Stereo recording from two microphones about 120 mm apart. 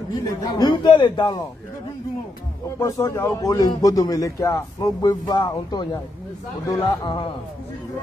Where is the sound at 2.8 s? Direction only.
25° left (ahead or behind).